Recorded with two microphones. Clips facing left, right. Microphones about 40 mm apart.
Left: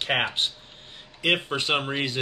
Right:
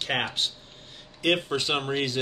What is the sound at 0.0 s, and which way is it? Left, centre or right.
Speech, left.